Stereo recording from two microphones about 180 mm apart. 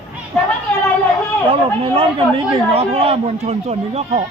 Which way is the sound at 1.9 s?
35° right (ahead or behind).